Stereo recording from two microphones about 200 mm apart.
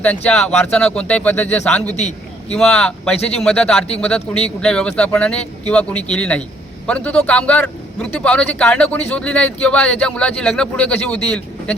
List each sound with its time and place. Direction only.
0.0 s speech: 5° left (ahead or behind)
2.0 s a man's voice: 35° left (ahead or behind)
2.6 s a man's voice: 5° left (ahead or behind)